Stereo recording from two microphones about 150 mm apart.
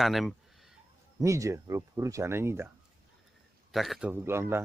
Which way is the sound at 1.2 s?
20° right (ahead or behind).